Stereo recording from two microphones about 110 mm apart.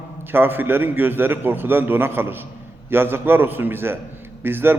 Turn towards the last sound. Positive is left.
turn(degrees=-20)  # may be behind; listen again after turning